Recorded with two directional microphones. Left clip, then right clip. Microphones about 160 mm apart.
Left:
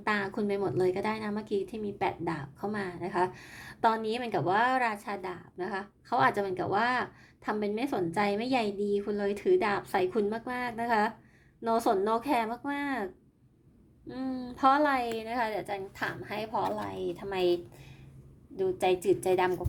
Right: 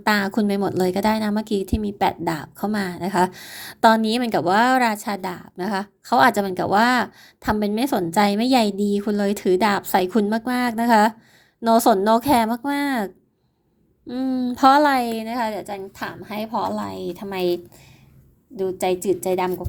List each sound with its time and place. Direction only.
0.0 s a woman's voice: 50° right (ahead or behind)
14.1 s a woman's voice: 40° right (ahead or behind); by 19.6 s 20° right (ahead or behind)